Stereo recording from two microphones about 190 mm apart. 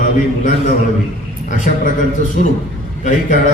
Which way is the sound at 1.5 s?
45° left (ahead or behind).